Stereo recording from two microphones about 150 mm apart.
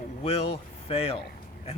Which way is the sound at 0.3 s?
40° left (ahead or behind).